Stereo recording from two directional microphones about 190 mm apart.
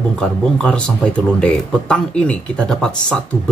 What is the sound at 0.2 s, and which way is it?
Speech, 5° left (ahead or behind).